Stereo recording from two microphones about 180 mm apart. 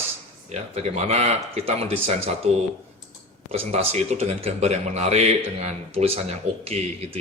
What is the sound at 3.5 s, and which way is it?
A man's voice, 35° right (ahead or behind).